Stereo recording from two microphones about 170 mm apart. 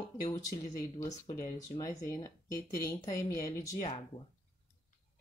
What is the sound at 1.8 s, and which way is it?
Speech, 20° left (ahead or behind).